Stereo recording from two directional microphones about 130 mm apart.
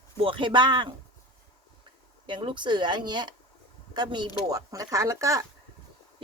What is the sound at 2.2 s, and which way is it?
A woman's voice, 40° right (ahead or behind).